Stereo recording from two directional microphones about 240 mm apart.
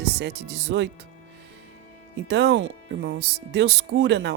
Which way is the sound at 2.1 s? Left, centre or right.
Right.